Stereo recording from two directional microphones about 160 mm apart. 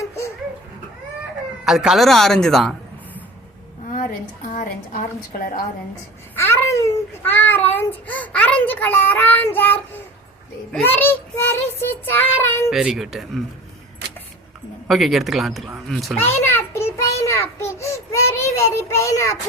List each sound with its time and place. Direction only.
1.6 s speech: 5° right (ahead or behind)
4.4 s a woman's voice: 60° left (ahead or behind)
6.3 s a child's voice: 15° left (ahead or behind)
12.7 s speech: 5° right (ahead or behind)
14.8 s speech: centre (ahead or behind)
16.1 s a sound: 15° left (ahead or behind)